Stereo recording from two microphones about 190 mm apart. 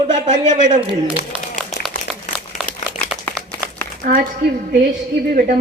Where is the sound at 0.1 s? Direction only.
40° right (ahead or behind).